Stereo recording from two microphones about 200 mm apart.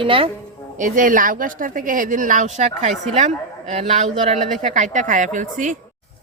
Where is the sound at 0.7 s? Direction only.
40° right (ahead or behind).